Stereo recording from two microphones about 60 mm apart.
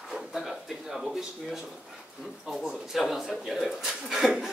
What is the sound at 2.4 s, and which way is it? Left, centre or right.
A man's voice, centre.